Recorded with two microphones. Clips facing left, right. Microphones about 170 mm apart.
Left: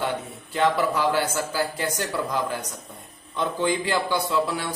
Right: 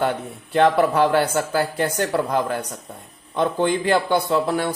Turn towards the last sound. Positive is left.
turn(degrees=-50)  # may be behind; listen again after turning